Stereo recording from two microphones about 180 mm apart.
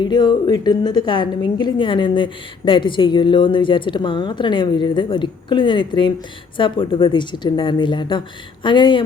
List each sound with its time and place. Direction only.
0.0 s a woman's voice: 25° left (ahead or behind)